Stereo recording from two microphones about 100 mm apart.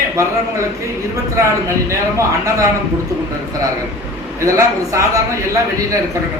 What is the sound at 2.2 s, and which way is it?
Speech, 30° right (ahead or behind).